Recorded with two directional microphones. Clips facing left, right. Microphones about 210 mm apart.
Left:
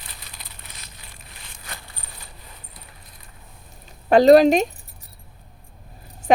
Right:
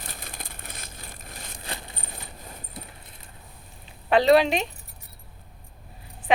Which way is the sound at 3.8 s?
45° left (ahead or behind).